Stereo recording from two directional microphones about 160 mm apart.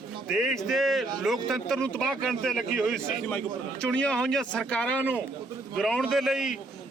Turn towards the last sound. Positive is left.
turn(degrees=0)  # may be behind; listen again after turning